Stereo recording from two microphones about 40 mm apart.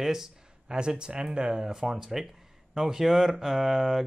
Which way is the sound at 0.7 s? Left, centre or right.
Right.